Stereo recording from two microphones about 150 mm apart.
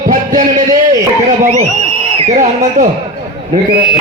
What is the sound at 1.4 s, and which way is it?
Speech, 55° right (ahead or behind).